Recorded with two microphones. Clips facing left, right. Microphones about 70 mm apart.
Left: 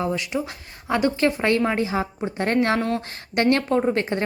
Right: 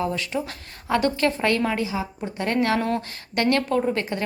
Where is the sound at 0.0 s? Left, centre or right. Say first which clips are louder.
Left 1 dB; centre.